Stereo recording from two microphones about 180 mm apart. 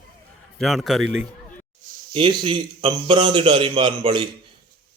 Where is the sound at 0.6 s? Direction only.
Centre (ahead or behind).